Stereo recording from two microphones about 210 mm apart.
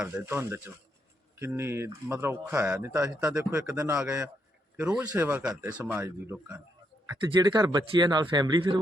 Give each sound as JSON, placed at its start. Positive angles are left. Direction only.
{"t": 0.0, "sound": "speech", "side_deg": -10}
{"t": 7.1, "sound": "speech", "side_deg": -20}